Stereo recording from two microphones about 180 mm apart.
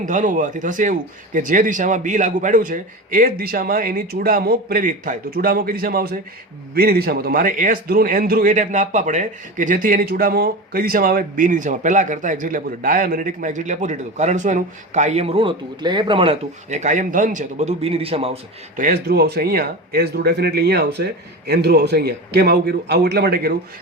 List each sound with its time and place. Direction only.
0.0 s a man's voice: 45° right (ahead or behind)
18.8 s speech: 55° right (ahead or behind)